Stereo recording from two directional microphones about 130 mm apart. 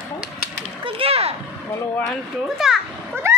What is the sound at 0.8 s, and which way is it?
Speech, 45° right (ahead or behind).